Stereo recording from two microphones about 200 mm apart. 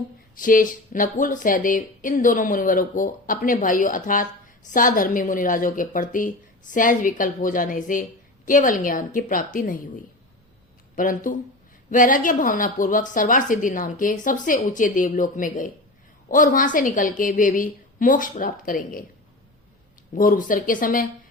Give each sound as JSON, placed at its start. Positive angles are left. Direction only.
{"t": 0.3, "sound": "a woman's voice", "side_deg": 40}
{"t": 10.9, "sound": "a woman's voice", "side_deg": 40}
{"t": 20.1, "sound": "a woman's voice", "side_deg": 45}